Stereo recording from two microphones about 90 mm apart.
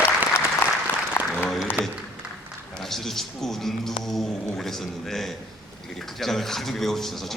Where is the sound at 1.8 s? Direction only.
25° right (ahead or behind).